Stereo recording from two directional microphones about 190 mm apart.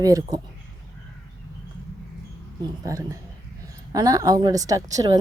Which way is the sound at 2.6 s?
15° right (ahead or behind).